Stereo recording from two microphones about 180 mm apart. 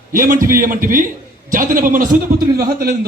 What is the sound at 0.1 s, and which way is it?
A man's voice, 50° right (ahead or behind).